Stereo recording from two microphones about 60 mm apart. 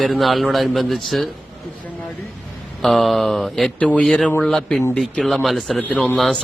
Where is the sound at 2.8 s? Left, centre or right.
Centre.